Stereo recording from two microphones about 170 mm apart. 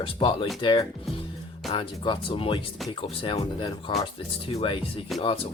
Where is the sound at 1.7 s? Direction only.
30° left (ahead or behind).